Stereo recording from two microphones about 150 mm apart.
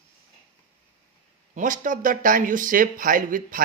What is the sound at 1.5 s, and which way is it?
Speech, 60° right (ahead or behind).